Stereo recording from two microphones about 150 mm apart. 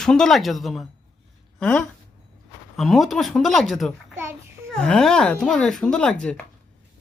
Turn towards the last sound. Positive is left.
turn(degrees=5)  # may be behind; listen again after turning